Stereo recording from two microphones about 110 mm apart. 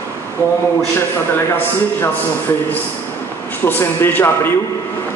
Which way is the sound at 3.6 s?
20° left (ahead or behind).